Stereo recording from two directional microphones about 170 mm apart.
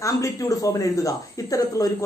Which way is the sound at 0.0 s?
20° left (ahead or behind).